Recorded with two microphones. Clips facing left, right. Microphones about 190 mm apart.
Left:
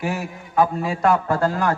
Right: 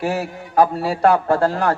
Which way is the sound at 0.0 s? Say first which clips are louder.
Right 4 dB; 35° right (ahead or behind).